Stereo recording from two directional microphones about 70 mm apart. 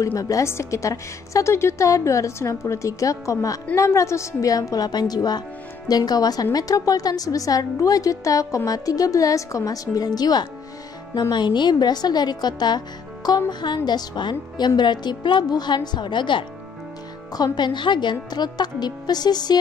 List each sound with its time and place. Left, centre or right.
0.0 s a woman's voice: left
0.5 s a woman's voice: left
11.1 s a woman's voice: left
17.3 s speech: left